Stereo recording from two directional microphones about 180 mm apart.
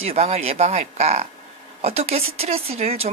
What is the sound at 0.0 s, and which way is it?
Speech, 35° right (ahead or behind).